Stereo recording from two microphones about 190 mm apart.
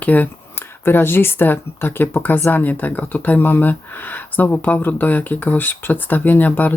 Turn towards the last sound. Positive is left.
turn(degrees=10)  # may be behind; listen again after turning